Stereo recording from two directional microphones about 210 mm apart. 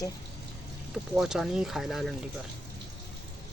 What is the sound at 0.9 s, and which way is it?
Speech, 5° right (ahead or behind).